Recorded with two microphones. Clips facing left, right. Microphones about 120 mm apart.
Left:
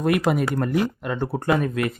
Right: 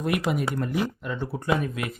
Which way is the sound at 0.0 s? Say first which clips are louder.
Left 5 dB; 55° left (ahead or behind).